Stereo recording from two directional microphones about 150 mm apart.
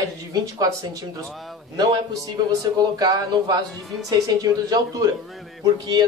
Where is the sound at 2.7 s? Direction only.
25° right (ahead or behind).